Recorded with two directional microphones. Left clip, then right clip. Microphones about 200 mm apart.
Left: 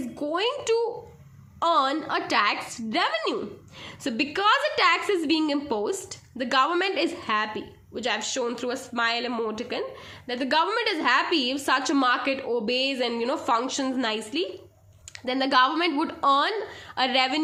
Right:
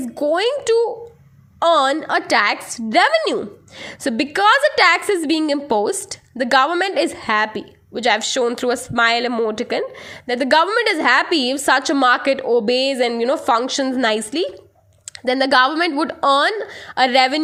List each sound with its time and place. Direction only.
0.2 s a woman's voice: 35° right (ahead or behind)